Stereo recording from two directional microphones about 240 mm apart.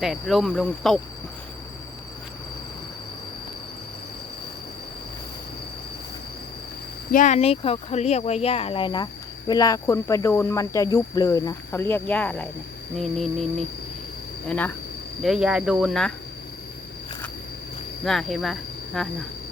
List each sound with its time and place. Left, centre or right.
0.0 s cricket: centre
7.1 s speech: left; by 12.5 s centre
13.0 s cricket: centre
14.4 s speech: centre
15.2 s cricket: centre
18.0 s speech: centre